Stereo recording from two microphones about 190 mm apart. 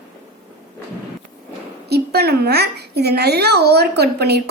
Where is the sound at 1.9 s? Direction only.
55° right (ahead or behind).